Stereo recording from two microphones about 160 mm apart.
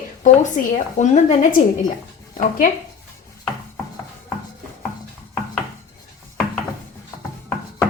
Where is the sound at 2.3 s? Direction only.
60° left (ahead or behind).